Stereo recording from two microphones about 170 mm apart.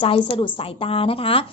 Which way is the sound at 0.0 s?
30° left (ahead or behind).